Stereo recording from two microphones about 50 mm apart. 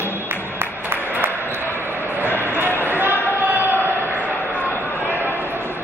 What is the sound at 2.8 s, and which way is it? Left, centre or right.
Basketball bounce, right.